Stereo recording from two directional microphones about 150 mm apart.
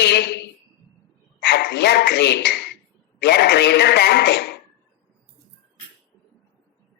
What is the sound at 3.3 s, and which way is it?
Speech, 90° left.